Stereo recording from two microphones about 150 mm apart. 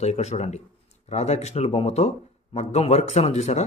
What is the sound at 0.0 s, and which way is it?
A man's voice, 45° left (ahead or behind).